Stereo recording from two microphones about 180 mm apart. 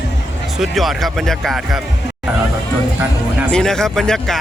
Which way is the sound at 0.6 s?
Centre (ahead or behind).